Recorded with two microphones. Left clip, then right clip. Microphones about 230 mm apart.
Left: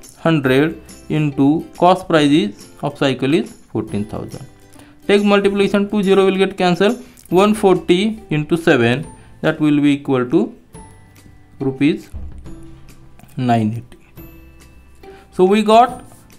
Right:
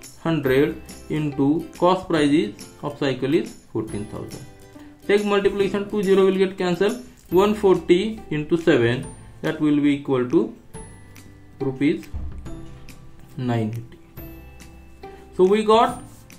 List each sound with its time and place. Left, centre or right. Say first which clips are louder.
0.2 s speech: left 5 dB; left
5.0 s speech: left 5 dB; left
13.4 s speech: left 9 dB; left
15.3 s speech: left 5 dB; left